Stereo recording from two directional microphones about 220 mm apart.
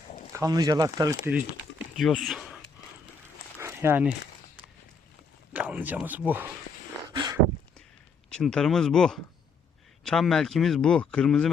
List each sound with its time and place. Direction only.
0.3 s speech: 15° right (ahead or behind)
1.3 s speech: 5° right (ahead or behind)
3.6 s a sound: 10° right (ahead or behind)
5.5 s speech: 5° right (ahead or behind)
7.1 s a sound: 20° right (ahead or behind)
8.3 s speech: 5° left (ahead or behind)